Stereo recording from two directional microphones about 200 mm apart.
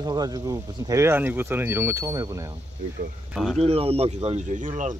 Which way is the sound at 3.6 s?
30° right (ahead or behind).